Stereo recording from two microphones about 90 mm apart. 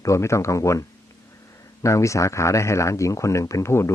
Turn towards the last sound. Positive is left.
turn(degrees=30)  # may be behind; listen again after turning